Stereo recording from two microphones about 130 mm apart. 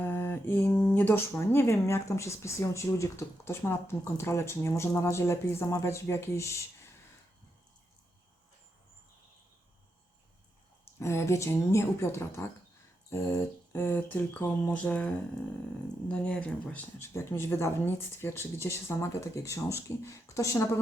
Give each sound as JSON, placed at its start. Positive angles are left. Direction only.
{"t": 0.0, "sound": "speech", "side_deg": 15}
{"t": 11.0, "sound": "speech", "side_deg": 20}
{"t": 17.0, "sound": "speech", "side_deg": 20}